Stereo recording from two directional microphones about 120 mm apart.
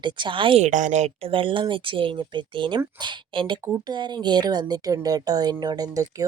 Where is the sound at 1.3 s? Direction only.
45° right (ahead or behind).